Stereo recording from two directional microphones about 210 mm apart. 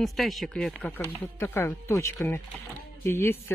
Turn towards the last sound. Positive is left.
turn(degrees=10)  # may be behind; listen again after turning